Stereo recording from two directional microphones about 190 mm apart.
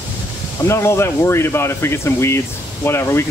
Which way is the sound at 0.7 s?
15° left (ahead or behind).